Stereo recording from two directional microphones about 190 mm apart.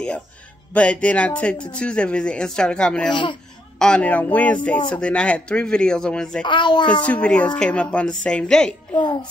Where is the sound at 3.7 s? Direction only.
5° left (ahead or behind).